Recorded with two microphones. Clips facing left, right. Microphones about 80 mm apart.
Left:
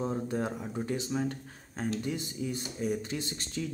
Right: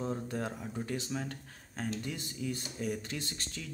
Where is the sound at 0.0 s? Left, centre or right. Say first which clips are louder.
Left 4 dB; centre.